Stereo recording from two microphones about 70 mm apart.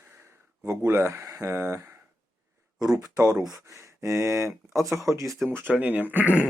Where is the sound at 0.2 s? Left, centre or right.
Right.